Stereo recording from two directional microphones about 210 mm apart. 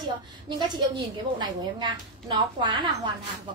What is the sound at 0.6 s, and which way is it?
Speech, 20° right (ahead or behind).